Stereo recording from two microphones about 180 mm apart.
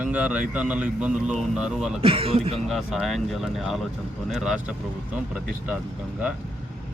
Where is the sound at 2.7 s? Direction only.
Centre (ahead or behind).